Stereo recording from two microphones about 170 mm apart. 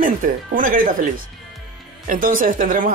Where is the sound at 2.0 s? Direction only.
50° right (ahead or behind).